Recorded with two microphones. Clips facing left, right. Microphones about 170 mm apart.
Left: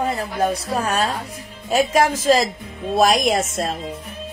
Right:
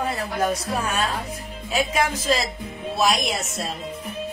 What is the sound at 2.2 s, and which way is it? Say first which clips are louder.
Music: left 7 dB; 45° left (ahead or behind).